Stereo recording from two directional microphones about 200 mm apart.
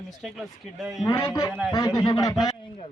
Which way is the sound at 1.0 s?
15° left (ahead or behind).